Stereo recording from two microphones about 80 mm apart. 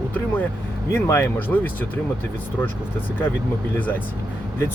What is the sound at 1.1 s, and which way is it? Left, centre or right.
Speech, left.